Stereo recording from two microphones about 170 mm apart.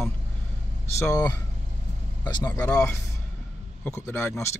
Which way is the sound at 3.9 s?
15° left (ahead or behind).